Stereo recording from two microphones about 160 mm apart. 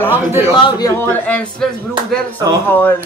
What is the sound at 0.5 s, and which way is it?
Speech, 30° left (ahead or behind).